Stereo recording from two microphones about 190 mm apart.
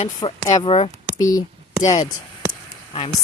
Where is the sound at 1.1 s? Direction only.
20° left (ahead or behind).